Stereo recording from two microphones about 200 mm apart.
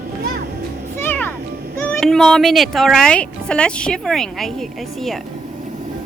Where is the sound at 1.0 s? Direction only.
10° left (ahead or behind).